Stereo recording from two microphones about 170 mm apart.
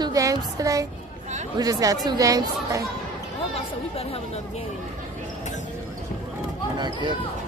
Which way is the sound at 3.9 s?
35° left (ahead or behind).